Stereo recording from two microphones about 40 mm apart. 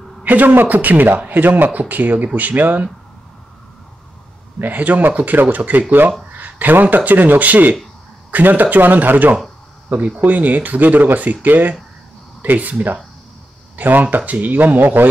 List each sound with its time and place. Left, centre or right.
0.2 s a man's voice: right
0.7 s speech: right
4.6 s speech: right
6.3 s a sound: right
7.1 s speech: right
9.9 s speech: right
12.5 s speech: right
13.7 s speech: right